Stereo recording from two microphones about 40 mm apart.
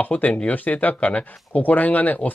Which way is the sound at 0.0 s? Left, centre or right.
Left.